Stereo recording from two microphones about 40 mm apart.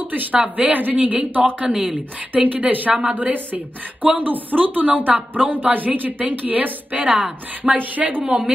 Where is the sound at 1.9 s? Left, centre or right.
Right.